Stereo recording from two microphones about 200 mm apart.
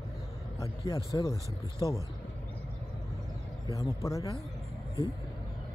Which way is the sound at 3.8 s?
15° left (ahead or behind).